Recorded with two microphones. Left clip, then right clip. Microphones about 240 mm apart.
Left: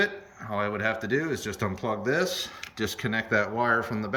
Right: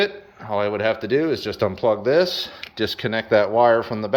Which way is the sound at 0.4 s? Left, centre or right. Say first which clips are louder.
Right 7 dB; centre.